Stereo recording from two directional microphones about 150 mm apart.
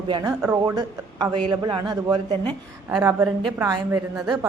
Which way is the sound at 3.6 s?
20° right (ahead or behind).